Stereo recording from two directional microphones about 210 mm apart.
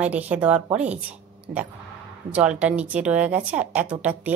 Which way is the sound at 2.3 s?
5° right (ahead or behind).